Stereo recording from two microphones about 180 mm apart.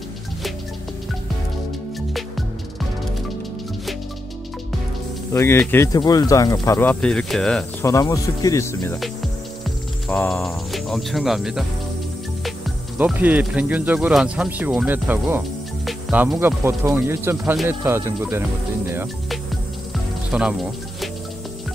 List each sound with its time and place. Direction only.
5.3 s speech: 15° left (ahead or behind)
7.8 s speech: 20° left (ahead or behind)
10.0 s speech: 10° left (ahead or behind)
10.7 s speech: centre (ahead or behind)
20.2 s speech: 5° right (ahead or behind)